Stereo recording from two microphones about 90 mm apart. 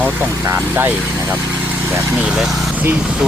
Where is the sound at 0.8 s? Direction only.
20° right (ahead or behind).